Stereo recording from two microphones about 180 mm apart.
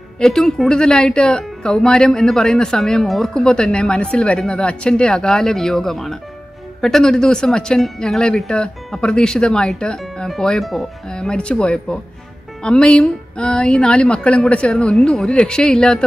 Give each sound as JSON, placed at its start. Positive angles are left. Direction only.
{"t": 0.2, "sound": "speech", "side_deg": 5}